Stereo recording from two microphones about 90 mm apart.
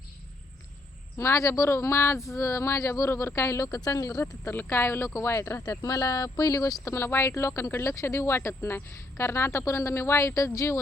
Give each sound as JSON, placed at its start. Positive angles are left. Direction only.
{"t": 1.1, "sound": "speech", "side_deg": 35}
{"t": 5.8, "sound": "speech", "side_deg": 40}